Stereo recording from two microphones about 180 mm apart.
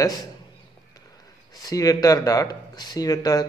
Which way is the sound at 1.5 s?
20° left (ahead or behind).